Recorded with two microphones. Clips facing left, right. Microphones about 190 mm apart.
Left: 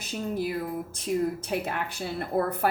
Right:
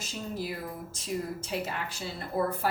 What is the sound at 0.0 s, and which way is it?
A woman's voice, 55° left (ahead or behind).